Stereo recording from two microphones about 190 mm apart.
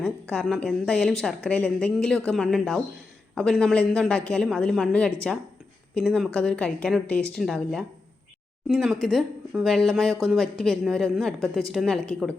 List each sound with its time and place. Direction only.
0.0 s speech: 5° left (ahead or behind)